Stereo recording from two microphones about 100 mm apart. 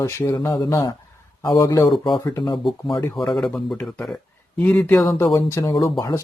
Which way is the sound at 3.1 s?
Centre (ahead or behind).